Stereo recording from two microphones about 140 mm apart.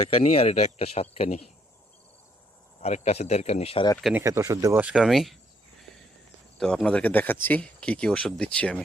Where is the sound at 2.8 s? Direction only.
55° left (ahead or behind).